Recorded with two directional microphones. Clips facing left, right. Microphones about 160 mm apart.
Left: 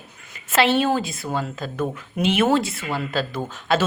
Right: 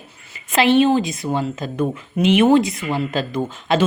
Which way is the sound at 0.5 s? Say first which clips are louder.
Right 4 dB; 5° left (ahead or behind).